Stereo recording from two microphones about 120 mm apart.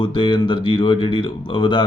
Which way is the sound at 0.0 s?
40° left (ahead or behind).